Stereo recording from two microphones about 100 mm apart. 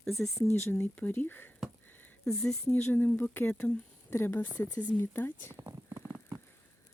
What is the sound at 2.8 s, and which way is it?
Speech, 20° left (ahead or behind).